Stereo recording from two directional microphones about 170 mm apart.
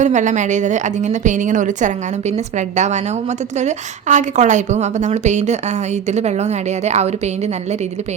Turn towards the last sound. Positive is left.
turn(degrees=-40)  # may be behind; listen again after turning